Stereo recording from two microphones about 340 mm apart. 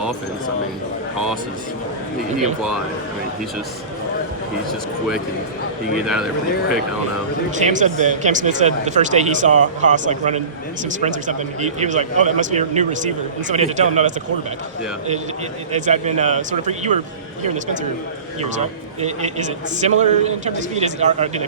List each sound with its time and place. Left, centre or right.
7.5 s speech: right
15.7 s speech: centre
19.0 s speech: right